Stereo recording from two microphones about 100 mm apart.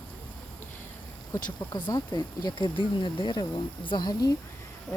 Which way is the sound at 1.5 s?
45° left (ahead or behind).